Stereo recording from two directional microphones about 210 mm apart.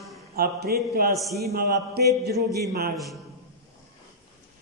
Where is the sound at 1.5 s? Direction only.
50° right (ahead or behind).